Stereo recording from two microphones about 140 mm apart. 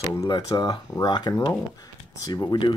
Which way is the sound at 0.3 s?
30° left (ahead or behind).